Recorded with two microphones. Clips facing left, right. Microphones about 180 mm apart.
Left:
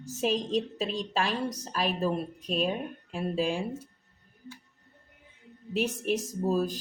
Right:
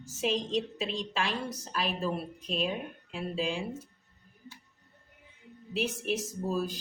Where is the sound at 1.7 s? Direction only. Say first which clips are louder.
Left 3 dB; 40° left (ahead or behind).